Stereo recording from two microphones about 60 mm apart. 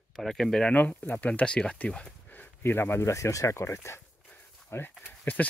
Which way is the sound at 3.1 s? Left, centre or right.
Left.